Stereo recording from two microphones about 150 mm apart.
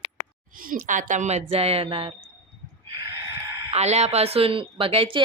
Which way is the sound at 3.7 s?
45° right (ahead or behind).